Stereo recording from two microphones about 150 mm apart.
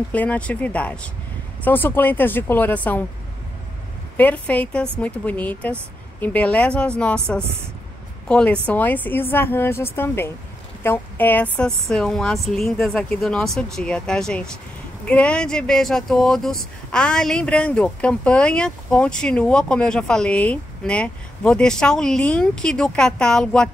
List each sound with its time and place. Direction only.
0.1 s a woman's voice: 10° left (ahead or behind)
4.2 s a woman's voice: 10° left (ahead or behind)